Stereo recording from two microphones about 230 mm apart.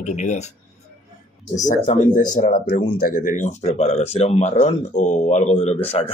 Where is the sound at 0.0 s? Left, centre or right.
Left.